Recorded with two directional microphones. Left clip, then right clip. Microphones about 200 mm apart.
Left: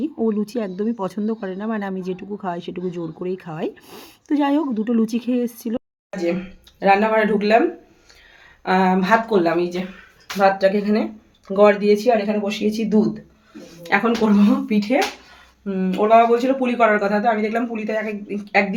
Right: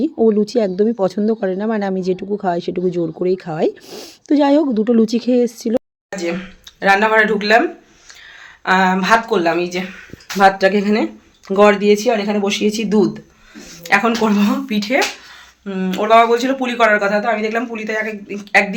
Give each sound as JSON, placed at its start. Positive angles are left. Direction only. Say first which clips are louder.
{"t": 0.0, "sound": "speech", "louder": "right 8 dB", "side_deg": -25}
{"t": 6.7, "sound": "a man's voice", "louder": "right 4 dB", "side_deg": 5}
{"t": 8.6, "sound": "a man's voice", "louder": "right 4 dB", "side_deg": 5}
{"t": 10.3, "sound": "speech", "louder": "right 4 dB", "side_deg": -30}
{"t": 13.8, "sound": "a man's voice", "louder": "right 4 dB", "side_deg": 0}